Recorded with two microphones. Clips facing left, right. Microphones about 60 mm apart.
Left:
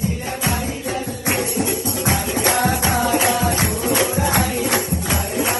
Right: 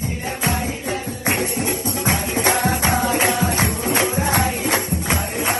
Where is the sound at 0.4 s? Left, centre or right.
Right.